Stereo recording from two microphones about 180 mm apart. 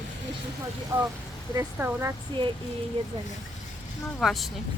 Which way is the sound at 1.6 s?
10° right (ahead or behind).